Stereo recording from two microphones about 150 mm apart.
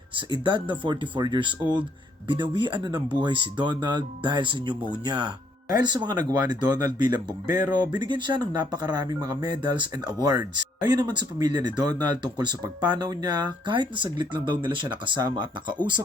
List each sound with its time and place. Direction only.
0.2 s speech: 30° right (ahead or behind)